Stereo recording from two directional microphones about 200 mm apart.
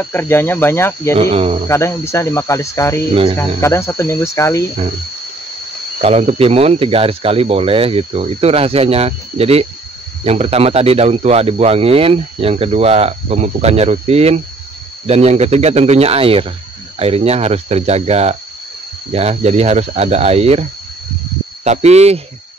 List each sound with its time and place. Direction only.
0.0 s speech: 10° left (ahead or behind)
1.1 s speech: 30° right (ahead or behind)
1.7 s speech: 15° left (ahead or behind)
5.9 s speech: 30° right (ahead or behind)
21.6 s speech: 30° right (ahead or behind)